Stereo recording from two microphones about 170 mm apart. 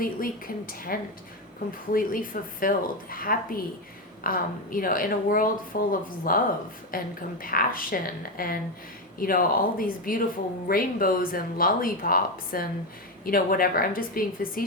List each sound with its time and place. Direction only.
0.0 s speech: 55° left (ahead or behind)